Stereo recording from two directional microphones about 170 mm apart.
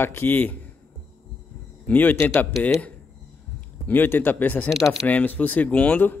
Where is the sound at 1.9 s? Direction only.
10° left (ahead or behind).